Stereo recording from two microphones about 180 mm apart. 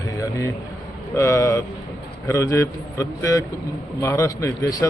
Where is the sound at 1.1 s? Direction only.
15° left (ahead or behind).